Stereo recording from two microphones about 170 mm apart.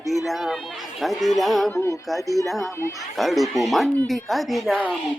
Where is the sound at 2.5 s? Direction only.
Centre (ahead or behind).